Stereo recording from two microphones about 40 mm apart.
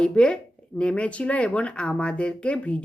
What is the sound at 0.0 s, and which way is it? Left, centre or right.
A woman's voice, left.